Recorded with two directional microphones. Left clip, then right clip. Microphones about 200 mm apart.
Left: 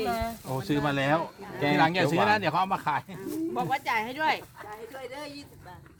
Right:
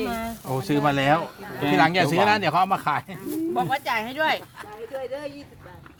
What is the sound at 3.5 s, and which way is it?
Speech, 20° right (ahead or behind).